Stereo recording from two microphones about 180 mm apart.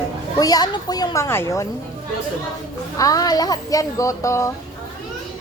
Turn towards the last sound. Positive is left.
turn(degrees=15)  # may be behind; listen again after turning